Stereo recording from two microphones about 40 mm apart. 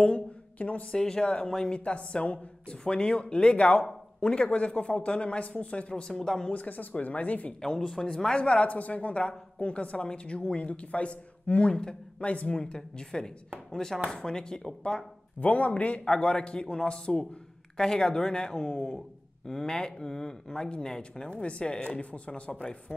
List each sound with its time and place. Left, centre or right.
0.0 s a sound: left
0.9 s a woman's voice: centre
1.9 s a woman's voice: left; by 6.5 s centre
6.5 s speech: left
7.6 s a woman's voice: centre
15.4 s a woman's voice: left